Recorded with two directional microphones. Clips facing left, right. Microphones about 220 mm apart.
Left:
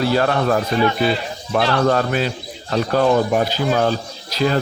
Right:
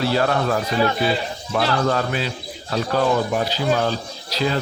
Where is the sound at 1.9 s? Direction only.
50° left (ahead or behind).